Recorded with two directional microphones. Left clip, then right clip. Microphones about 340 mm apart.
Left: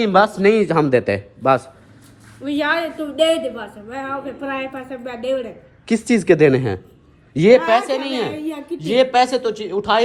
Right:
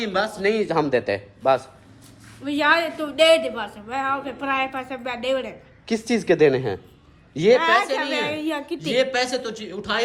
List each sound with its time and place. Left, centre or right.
0.0 s a man's voice: centre
2.4 s a woman's voice: centre
5.8 s a man's voice: centre